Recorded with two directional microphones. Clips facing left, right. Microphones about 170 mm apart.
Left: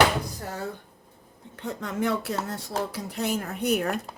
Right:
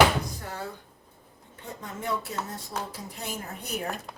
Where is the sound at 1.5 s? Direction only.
75° left (ahead or behind).